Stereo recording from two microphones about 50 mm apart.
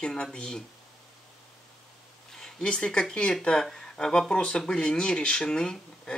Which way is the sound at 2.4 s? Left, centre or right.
Centre.